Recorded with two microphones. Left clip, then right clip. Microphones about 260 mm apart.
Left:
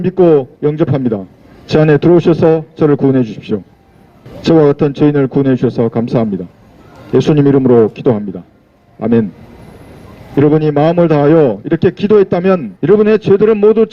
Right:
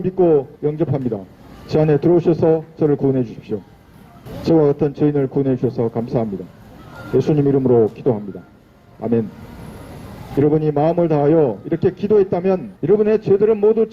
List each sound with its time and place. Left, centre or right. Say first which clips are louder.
0.0 s a man's voice: left 6 dB; left
10.3 s a man's voice: left 6 dB; left